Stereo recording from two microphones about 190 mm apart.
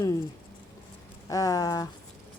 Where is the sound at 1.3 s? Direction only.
20° left (ahead or behind).